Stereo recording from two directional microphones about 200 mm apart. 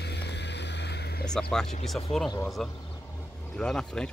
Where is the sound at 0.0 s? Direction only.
55° left (ahead or behind).